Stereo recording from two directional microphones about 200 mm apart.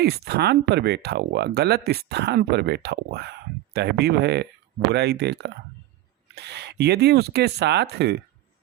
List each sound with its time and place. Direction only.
0.0 s speech: 55° right (ahead or behind)